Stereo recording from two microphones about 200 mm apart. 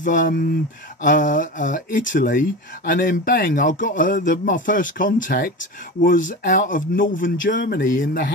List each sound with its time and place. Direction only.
0.0 s speech: 40° left (ahead or behind)